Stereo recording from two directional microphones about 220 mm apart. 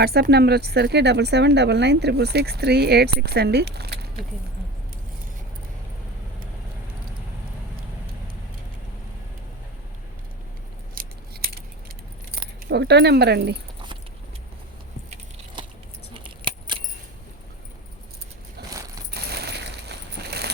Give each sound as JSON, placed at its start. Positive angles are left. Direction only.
{"t": 0.0, "sound": "speech", "side_deg": -45}
{"t": 11.0, "sound": "scissors", "side_deg": -40}
{"t": 12.6, "sound": "speech", "side_deg": -50}
{"t": 16.1, "sound": "keys jangling", "side_deg": -20}
{"t": 18.7, "sound": "a sound", "side_deg": -15}
{"t": 19.1, "sound": "a sound", "side_deg": -45}